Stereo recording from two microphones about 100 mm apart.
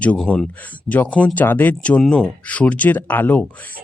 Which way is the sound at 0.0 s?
10° left (ahead or behind).